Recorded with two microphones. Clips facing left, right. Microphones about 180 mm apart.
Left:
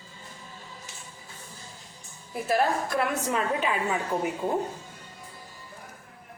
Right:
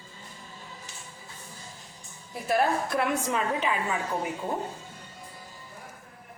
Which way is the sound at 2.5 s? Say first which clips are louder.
Even; centre (ahead or behind).